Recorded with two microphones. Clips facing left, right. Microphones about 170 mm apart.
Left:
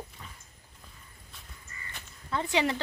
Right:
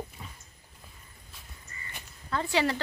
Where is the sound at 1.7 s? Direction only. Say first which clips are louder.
Even; 30° right (ahead or behind).